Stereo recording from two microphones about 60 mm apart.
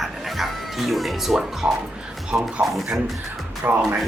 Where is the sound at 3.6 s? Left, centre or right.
Right.